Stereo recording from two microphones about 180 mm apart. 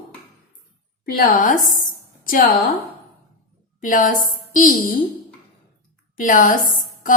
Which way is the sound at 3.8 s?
50° left (ahead or behind).